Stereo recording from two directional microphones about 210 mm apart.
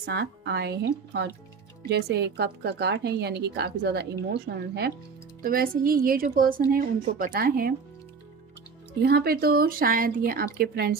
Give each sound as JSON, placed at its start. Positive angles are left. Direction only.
{"t": 0.0, "sound": "a woman's voice", "side_deg": -50}
{"t": 9.0, "sound": "a woman's voice", "side_deg": -50}